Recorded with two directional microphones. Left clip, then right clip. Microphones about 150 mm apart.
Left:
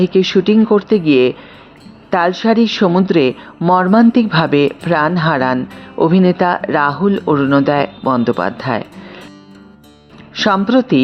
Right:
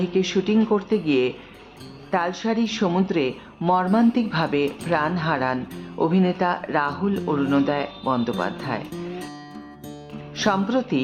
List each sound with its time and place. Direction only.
0.0 s speech: 55° left (ahead or behind)
10.3 s speech: 50° left (ahead or behind)